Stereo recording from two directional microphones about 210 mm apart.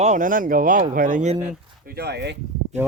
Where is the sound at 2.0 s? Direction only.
50° right (ahead or behind).